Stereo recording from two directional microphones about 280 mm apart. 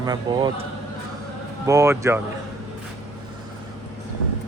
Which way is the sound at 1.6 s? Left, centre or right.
Centre.